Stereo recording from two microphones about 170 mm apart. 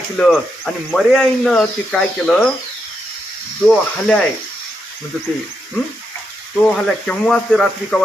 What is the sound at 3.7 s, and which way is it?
Speech, 5° left (ahead or behind).